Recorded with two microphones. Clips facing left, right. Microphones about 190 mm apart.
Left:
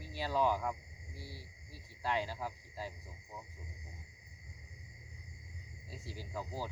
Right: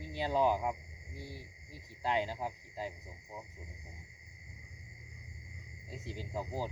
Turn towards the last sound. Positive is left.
turn(degrees=-20)  # may be behind; listen again after turning